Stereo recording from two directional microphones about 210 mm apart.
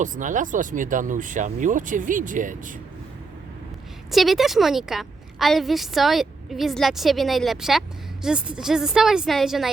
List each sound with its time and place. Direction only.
0.0 s speech: 35° right (ahead or behind)
4.1 s a woman's voice: centre (ahead or behind)